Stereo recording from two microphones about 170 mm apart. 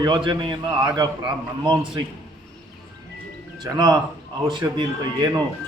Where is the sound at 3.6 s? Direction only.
25° right (ahead or behind).